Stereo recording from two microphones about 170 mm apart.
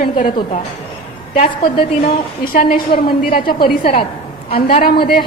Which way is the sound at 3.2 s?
30° left (ahead or behind).